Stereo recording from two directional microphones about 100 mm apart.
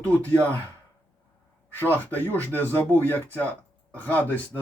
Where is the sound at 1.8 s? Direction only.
15° left (ahead or behind).